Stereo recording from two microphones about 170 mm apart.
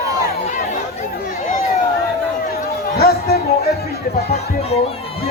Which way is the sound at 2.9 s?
65° left (ahead or behind).